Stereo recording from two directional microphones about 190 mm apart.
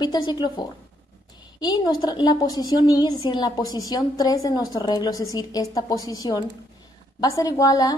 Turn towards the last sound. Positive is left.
turn(degrees=20)  # may be behind; listen again after turning